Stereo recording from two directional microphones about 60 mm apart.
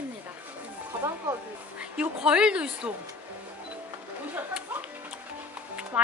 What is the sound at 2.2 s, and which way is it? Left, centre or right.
Speech, centre.